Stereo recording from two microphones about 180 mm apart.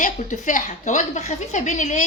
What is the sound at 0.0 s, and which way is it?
A woman's voice, 45° left (ahead or behind).